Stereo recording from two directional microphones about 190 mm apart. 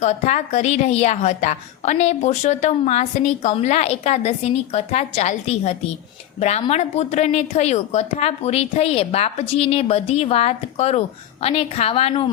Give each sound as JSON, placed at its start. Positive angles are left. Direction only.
{"t": 0.0, "sound": "a woman's voice", "side_deg": 40}